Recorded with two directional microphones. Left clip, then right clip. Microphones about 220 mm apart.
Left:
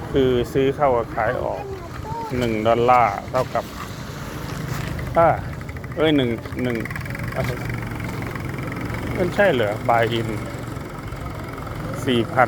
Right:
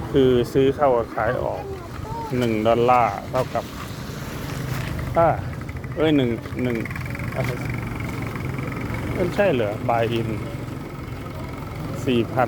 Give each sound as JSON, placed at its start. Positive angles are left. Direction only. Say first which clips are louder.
{"t": 0.1, "sound": "speech", "louder": "right 1 dB", "side_deg": -20}
{"t": 2.4, "sound": "speech", "louder": "even", "side_deg": -20}
{"t": 5.1, "sound": "speech", "louder": "left 2 dB", "side_deg": -5}
{"t": 9.3, "sound": "speech", "louder": "left 3 dB", "side_deg": -5}
{"t": 12.0, "sound": "speech", "louder": "left 3 dB", "side_deg": -5}